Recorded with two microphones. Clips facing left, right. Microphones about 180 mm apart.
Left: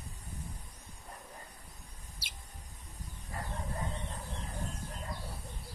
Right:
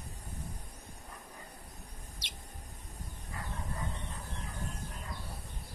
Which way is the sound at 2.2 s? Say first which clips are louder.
Right 3 dB; 5° left (ahead or behind).